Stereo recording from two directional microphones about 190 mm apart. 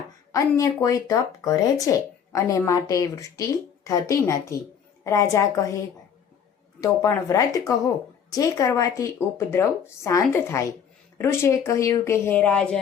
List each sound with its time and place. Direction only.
0.3 s speech: 15° left (ahead or behind)
6.8 s speech: 15° left (ahead or behind)